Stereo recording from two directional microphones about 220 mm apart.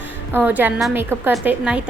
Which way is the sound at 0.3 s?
10° right (ahead or behind).